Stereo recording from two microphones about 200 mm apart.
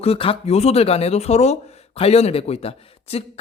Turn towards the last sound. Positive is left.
turn(degrees=30)  # may be behind; listen again after turning